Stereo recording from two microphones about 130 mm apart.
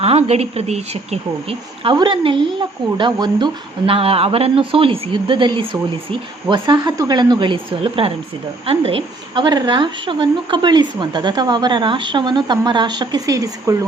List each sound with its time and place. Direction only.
0.0 s a woman's voice: 50° right (ahead or behind); by 13.8 s 25° right (ahead or behind)